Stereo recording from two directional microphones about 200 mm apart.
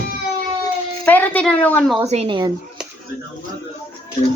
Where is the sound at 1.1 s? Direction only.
5° left (ahead or behind).